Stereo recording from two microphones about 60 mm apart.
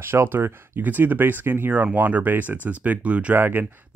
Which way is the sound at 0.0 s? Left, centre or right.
Right.